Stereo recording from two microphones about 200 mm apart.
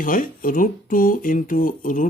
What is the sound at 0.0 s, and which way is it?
Speech, 45° left (ahead or behind).